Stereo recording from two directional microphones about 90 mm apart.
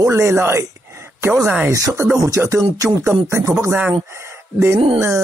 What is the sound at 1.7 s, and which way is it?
Speech, 30° right (ahead or behind).